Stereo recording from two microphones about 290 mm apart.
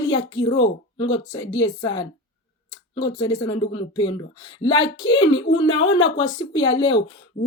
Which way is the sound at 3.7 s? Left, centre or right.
Centre.